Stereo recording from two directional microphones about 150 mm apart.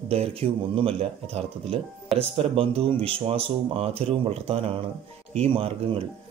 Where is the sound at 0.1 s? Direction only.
40° right (ahead or behind).